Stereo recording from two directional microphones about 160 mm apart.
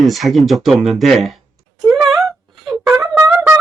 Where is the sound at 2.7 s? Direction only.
15° right (ahead or behind).